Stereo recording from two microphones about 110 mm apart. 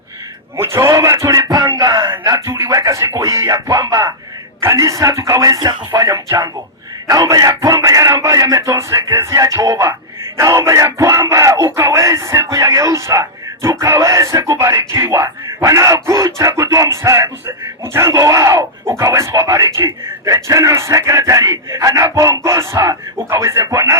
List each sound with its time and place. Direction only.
0.5 s speech: 25° right (ahead or behind)